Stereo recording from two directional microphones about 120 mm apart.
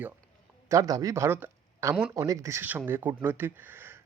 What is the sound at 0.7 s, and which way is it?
Speech, 30° right (ahead or behind).